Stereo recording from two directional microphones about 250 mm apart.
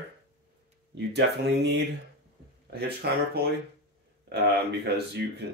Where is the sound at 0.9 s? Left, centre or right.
Right.